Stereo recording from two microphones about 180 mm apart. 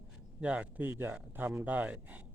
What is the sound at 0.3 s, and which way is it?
Speech, 5° right (ahead or behind).